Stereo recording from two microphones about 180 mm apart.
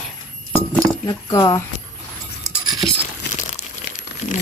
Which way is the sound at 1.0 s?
20° left (ahead or behind).